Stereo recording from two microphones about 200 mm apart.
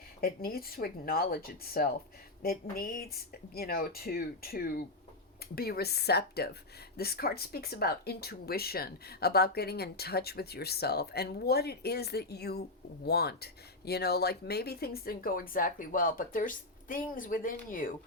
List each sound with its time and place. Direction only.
0.2 s speech: 50° left (ahead or behind)